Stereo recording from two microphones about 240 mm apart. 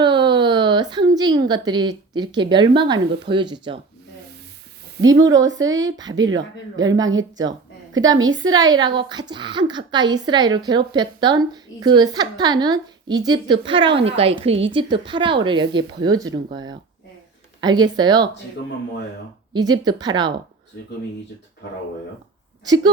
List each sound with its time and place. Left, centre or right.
0.0 s a woman's voice: centre
5.0 s a woman's voice: right
5.5 s a woman's voice: centre
7.9 s a woman's voice: right
8.4 s a woman's voice: centre
19.5 s a woman's voice: centre
22.6 s speech: centre